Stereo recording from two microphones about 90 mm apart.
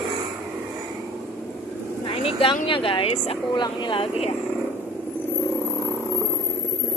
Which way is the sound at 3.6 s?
65° left (ahead or behind).